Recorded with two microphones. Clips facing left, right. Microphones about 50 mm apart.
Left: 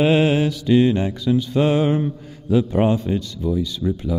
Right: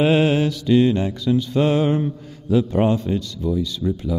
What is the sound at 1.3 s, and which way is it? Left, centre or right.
Mantra, centre.